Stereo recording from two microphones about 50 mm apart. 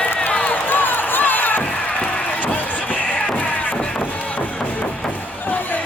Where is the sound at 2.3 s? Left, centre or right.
Left.